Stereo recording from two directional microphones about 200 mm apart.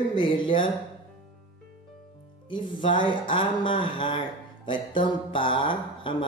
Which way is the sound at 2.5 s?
25° left (ahead or behind).